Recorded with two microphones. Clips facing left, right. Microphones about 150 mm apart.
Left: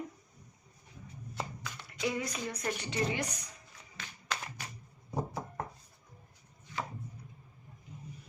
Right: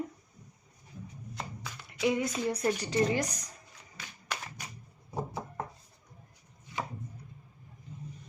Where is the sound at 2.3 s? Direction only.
30° right (ahead or behind).